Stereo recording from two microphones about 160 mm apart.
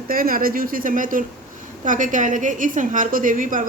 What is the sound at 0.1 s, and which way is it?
A woman's voice, 65° right (ahead or behind).